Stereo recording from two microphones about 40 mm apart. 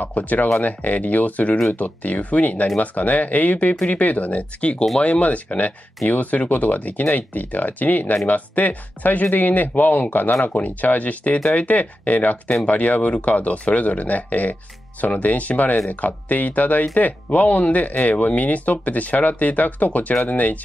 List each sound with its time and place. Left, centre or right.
0.0 s speech: left